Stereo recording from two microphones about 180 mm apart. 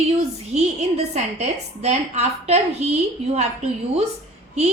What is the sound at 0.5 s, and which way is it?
A woman's voice, 40° right (ahead or behind).